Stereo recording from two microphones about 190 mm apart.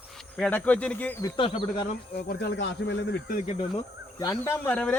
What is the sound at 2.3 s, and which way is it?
Speech, 65° left (ahead or behind).